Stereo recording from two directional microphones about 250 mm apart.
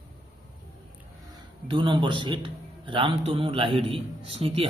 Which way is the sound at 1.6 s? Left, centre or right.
Centre.